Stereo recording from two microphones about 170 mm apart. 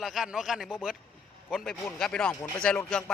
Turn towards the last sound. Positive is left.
turn(degrees=5)  # may be behind; listen again after turning